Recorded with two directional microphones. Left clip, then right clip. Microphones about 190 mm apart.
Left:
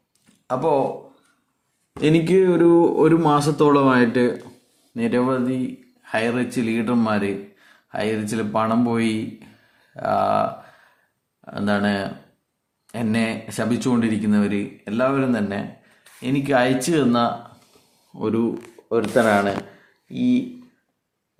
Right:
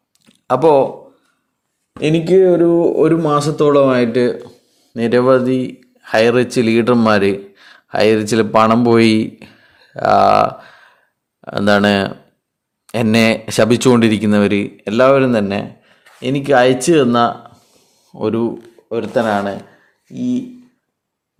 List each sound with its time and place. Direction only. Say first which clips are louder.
0.4 s speech: right 9 dB; 50° right (ahead or behind)
2.2 s speech: right 7 dB; 5° right (ahead or behind)
3.0 s speech: right 3 dB; 20° right (ahead or behind)
4.9 s speech: right 9 dB; 45° right (ahead or behind)
18.9 s speech: right 1 dB; 25° right (ahead or behind)